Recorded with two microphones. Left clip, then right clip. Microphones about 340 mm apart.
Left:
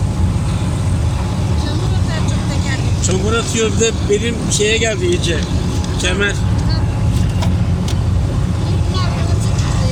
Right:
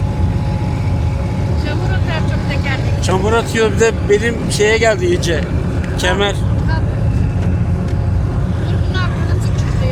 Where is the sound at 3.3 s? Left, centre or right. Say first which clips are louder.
Right 3 dB; right.